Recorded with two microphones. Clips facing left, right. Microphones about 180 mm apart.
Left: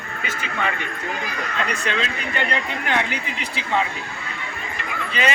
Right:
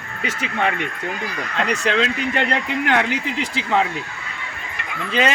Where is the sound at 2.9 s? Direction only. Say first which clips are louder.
Right 3 dB; 80° right.